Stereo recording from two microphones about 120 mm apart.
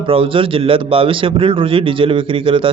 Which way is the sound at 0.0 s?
50° right (ahead or behind).